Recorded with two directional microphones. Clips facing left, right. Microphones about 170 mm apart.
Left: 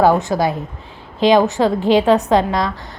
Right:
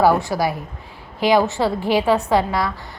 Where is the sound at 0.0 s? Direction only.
20° left (ahead or behind).